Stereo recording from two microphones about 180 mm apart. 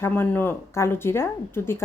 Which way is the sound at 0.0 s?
10° left (ahead or behind).